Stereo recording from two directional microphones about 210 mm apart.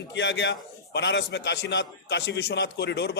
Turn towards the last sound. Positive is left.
turn(degrees=55)  # may be behind; listen again after turning